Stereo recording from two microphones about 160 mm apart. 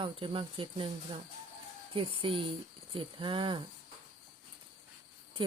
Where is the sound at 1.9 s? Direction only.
35° right (ahead or behind).